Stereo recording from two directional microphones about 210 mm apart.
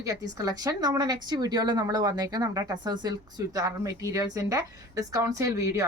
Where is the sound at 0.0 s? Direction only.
15° right (ahead or behind).